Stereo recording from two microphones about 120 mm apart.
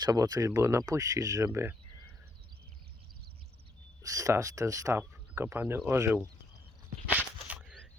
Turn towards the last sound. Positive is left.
turn(degrees=-15)  # may be behind; listen again after turning